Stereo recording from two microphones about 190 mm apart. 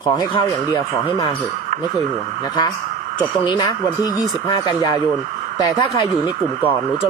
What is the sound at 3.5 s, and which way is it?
Speech, 20° left (ahead or behind).